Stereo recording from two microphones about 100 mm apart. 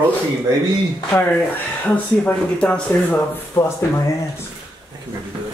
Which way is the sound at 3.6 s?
25° left (ahead or behind).